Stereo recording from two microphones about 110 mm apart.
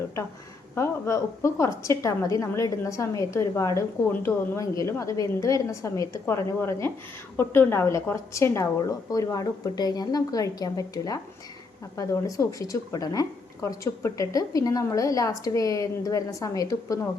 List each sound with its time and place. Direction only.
0.8 s a woman's voice: 25° left (ahead or behind)